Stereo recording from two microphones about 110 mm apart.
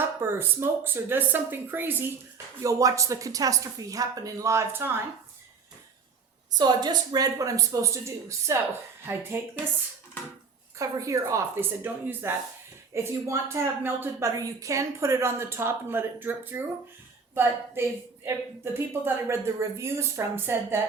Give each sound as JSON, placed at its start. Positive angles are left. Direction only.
{"t": 0.0, "sound": "a woman's voice", "side_deg": -20}
{"t": 2.6, "sound": "a woman's voice", "side_deg": -30}
{"t": 6.5, "sound": "a woman's voice", "side_deg": -40}
{"t": 10.8, "sound": "a woman's voice", "side_deg": -30}